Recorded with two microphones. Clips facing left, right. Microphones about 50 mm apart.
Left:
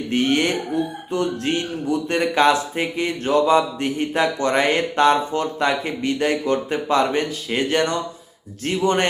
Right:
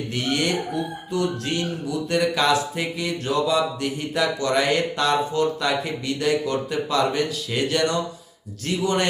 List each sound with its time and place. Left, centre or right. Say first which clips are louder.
0.1 s speech: left 5 dB; left